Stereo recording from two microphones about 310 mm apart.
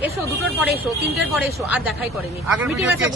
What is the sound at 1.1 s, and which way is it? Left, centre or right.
A woman's voice, centre.